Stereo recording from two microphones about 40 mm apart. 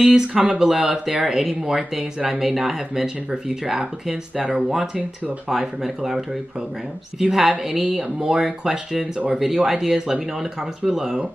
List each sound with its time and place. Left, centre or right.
0.0 s speech: centre